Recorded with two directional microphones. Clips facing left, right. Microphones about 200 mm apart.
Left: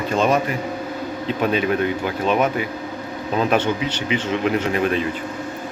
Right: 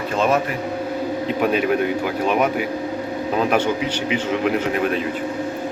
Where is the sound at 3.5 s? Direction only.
10° right (ahead or behind).